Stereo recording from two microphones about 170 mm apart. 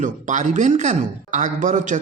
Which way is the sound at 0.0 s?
45° right (ahead or behind).